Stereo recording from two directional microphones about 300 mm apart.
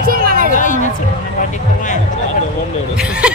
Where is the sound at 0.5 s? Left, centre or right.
Left.